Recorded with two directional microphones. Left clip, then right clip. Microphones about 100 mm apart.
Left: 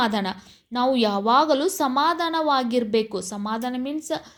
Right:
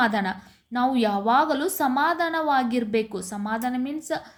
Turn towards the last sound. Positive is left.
turn(degrees=25)  # may be behind; listen again after turning